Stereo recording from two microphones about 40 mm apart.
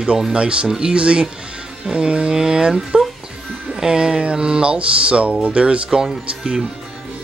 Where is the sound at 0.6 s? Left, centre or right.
Centre.